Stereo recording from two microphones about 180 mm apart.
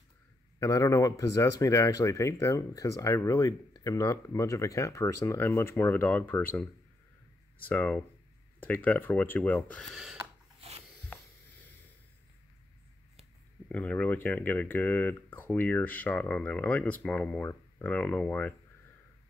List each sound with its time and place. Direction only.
0.6 s speech: 20° left (ahead or behind)
9.9 s a sound: 5° right (ahead or behind)
13.7 s speech: 10° left (ahead or behind)